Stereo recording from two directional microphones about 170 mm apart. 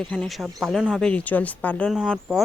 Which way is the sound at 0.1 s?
Centre (ahead or behind).